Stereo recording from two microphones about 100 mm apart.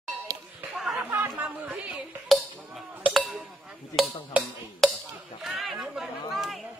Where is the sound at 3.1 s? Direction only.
Centre (ahead or behind).